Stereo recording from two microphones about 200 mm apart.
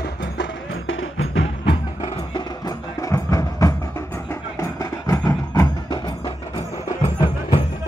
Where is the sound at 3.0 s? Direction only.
15° left (ahead or behind).